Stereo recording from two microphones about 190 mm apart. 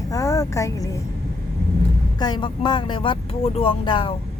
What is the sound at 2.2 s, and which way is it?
Speech, 20° left (ahead or behind).